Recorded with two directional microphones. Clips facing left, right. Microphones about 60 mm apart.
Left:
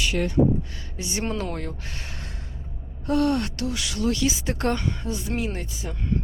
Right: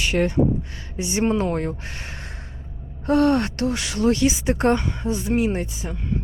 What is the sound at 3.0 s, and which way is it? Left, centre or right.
A woman's voice, right.